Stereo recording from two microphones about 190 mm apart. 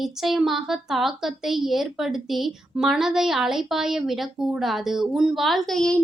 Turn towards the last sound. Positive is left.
turn(degrees=5)  # may be behind; listen again after turning